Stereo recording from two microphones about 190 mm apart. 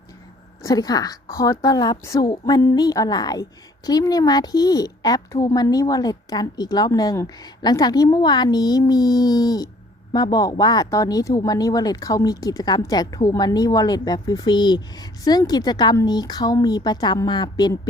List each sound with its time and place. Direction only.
0.6 s speech: 20° left (ahead or behind)